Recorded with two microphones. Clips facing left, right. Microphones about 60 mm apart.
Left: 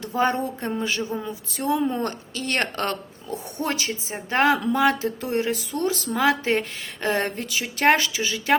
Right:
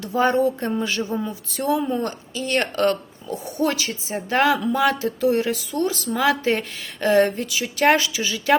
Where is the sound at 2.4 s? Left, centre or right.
Left.